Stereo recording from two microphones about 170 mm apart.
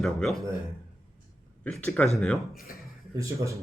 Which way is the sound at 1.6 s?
5° left (ahead or behind).